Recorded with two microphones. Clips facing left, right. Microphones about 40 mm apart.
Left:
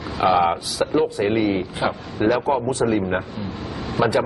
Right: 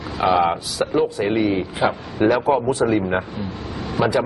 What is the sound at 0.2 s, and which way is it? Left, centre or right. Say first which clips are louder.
A man's voice: even; centre.